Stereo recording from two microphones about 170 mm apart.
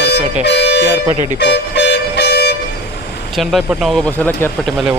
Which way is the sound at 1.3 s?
80° left.